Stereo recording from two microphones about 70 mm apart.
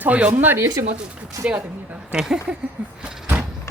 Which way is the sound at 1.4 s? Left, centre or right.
Right.